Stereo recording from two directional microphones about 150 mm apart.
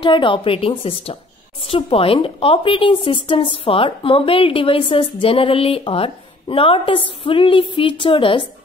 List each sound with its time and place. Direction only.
0.0 s a woman's voice: 35° left (ahead or behind)